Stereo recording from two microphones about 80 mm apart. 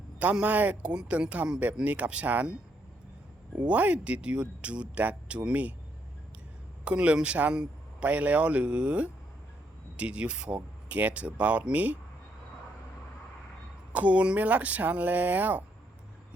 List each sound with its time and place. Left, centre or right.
0.2 s speech: centre
6.8 s speech: centre
13.9 s speech: centre